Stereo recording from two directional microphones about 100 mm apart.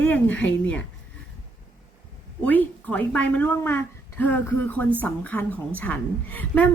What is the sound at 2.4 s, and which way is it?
A woman's voice, 15° left (ahead or behind).